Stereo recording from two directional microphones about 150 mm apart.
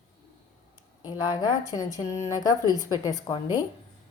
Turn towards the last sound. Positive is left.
turn(degrees=25)  # may be behind; listen again after turning